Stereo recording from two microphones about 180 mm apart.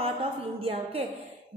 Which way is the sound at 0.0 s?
30° right (ahead or behind).